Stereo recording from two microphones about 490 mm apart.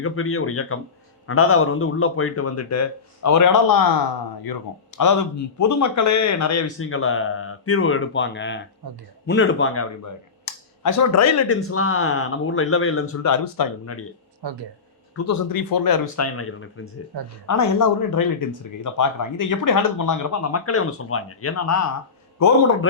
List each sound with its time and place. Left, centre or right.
0.0 s speech: left
10.4 s speech: left
14.4 s speech: right
15.1 s speech: left
16.2 s speech: left